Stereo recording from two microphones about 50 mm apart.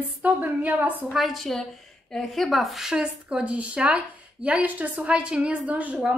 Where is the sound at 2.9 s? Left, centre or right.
Centre; by 5.0 s right.